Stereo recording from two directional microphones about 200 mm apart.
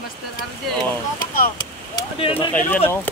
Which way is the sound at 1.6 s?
25° left (ahead or behind).